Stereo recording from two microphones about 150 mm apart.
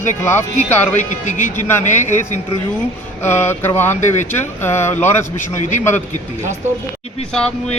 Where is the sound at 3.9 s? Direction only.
55° left (ahead or behind).